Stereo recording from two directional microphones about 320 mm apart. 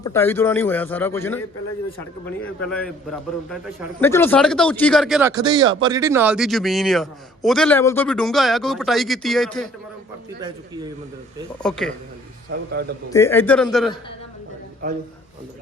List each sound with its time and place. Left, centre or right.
0.0 s a man's voice: centre
5.3 s speech: centre
11.6 s speech: centre
13.1 s speech: centre